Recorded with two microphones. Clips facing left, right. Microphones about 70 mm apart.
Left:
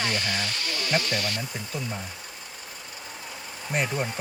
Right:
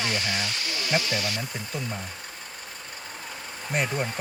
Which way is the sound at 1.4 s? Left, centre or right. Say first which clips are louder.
Even; centre.